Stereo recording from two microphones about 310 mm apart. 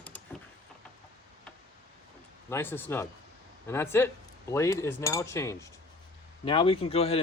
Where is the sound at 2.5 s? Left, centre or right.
Centre.